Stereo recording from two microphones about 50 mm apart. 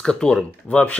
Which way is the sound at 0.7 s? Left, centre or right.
Left.